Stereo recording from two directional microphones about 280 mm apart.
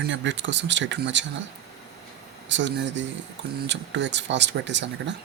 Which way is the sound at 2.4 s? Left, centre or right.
Right.